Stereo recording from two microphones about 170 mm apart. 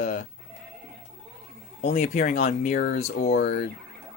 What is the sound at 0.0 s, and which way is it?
Speech, 50° left (ahead or behind).